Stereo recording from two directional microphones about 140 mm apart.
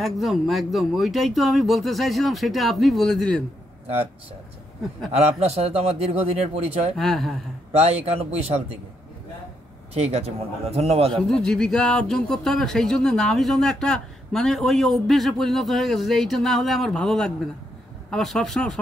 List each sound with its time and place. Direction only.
0.0 s speech: centre (ahead or behind)
5.1 s a man's voice: 45° right (ahead or behind)
7.0 s speech: centre (ahead or behind)
7.7 s a man's voice: 50° right (ahead or behind)
9.9 s a man's voice: 45° right (ahead or behind)
11.2 s speech: 5° left (ahead or behind)